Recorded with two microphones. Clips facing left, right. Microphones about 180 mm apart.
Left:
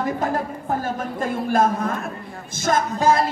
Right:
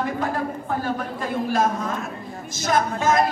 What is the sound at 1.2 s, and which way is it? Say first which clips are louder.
Speech: left 3 dB; 55° left (ahead or behind).